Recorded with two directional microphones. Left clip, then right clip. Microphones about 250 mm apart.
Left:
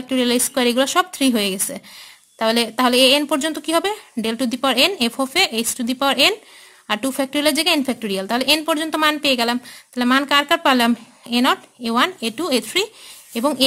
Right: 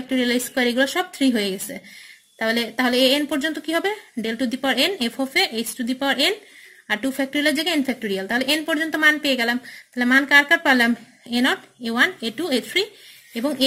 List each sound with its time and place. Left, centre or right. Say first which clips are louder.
0.1 s a woman's voice: left 3 dB; centre